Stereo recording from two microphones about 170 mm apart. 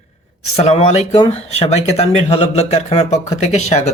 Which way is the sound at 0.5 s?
40° left (ahead or behind).